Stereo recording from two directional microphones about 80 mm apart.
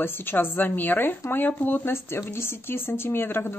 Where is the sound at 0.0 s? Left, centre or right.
Left.